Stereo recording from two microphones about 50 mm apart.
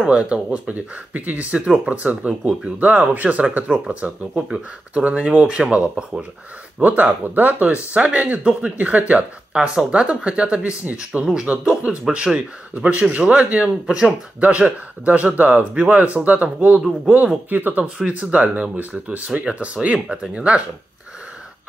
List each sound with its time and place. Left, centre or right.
0.0 s speech: centre
6.8 s speech: right
11.1 s speech: centre
17.5 s speech: right
17.9 s speech: right